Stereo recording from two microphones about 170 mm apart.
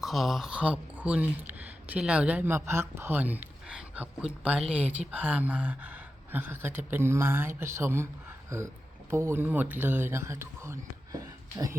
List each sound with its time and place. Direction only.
0.0 s speech: centre (ahead or behind); by 11.8 s 20° right (ahead or behind)